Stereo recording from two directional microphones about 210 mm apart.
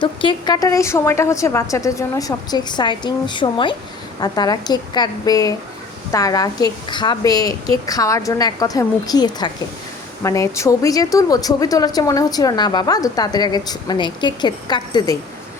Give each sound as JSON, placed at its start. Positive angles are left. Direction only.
{"t": 0.0, "sound": "a woman's voice", "side_deg": 25}